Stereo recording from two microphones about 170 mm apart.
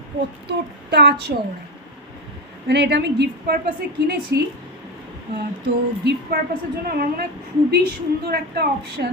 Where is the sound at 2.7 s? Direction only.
80° right.